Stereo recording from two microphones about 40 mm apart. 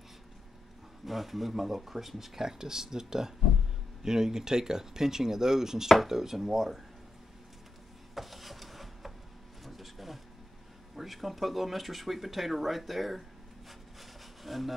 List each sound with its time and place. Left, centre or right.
1.0 s speech: centre
8.1 s rub: centre
9.7 s a sound: centre
11.0 s speech: centre
14.4 s speech: centre